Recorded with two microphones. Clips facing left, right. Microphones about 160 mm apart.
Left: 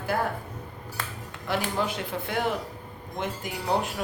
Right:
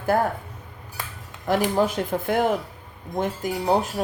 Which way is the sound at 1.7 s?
45° right (ahead or behind).